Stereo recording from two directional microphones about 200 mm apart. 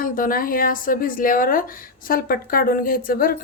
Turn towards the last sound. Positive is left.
turn(degrees=45)  # may be behind; listen again after turning